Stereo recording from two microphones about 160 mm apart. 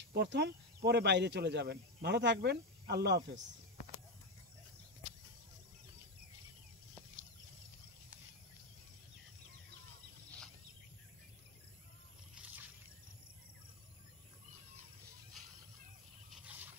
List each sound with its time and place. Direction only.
0.1 s speech: 90° right